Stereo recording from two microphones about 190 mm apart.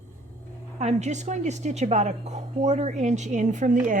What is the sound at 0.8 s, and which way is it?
A woman's voice, 35° right (ahead or behind).